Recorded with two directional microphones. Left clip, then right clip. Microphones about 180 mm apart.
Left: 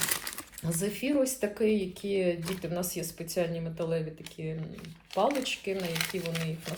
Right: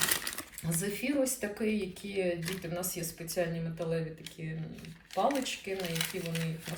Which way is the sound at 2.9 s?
Centre (ahead or behind).